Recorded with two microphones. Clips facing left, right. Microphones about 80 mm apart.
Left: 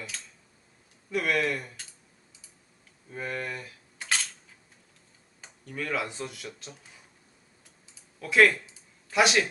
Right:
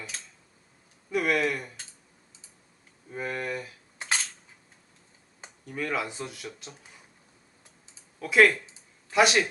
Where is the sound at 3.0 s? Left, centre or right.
Centre.